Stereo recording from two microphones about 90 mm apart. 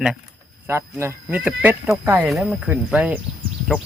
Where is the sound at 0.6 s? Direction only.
25° right (ahead or behind).